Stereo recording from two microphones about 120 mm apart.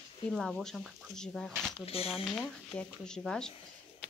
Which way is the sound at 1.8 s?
55° left (ahead or behind).